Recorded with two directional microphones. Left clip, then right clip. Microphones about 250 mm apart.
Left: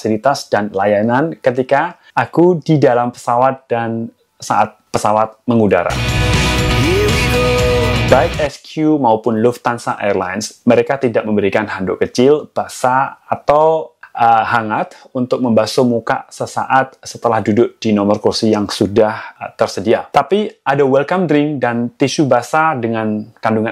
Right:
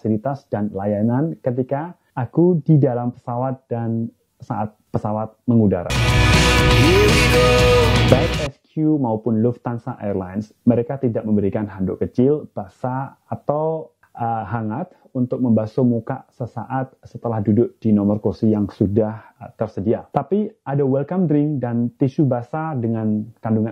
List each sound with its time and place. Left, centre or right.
0.0 s speech: centre
2.3 s speech: left
2.6 s speech: centre
6.0 s music: centre
8.5 s speech: centre
15.7 s speech: left
16.1 s speech: centre